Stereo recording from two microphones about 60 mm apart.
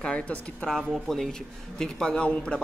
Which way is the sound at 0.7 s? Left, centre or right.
Centre.